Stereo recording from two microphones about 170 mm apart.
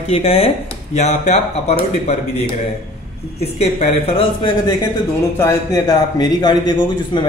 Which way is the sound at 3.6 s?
40° left (ahead or behind).